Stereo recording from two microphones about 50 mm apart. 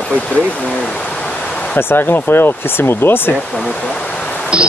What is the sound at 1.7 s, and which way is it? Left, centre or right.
Speech, left.